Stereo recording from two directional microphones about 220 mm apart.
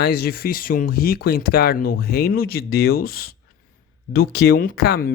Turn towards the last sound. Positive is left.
turn(degrees=45)  # may be behind; listen again after turning